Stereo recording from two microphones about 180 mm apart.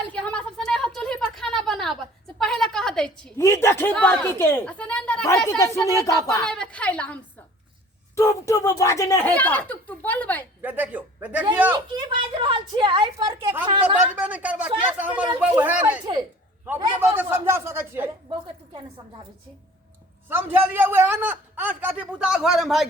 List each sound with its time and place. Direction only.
0.1 s a sound: 5° left (ahead or behind)
3.3 s speech: 15° left (ahead or behind)
5.5 s speech: 15° left (ahead or behind)
6.4 s speech: 5° left (ahead or behind)
10.6 s a man's voice: 10° right (ahead or behind)
11.7 s a woman's voice: 25° right (ahead or behind)
13.8 s a man's voice: 10° right (ahead or behind)
20.2 s a man's voice: 10° right (ahead or behind)